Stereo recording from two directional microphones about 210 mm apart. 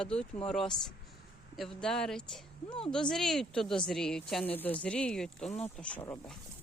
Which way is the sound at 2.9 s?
5° left (ahead or behind).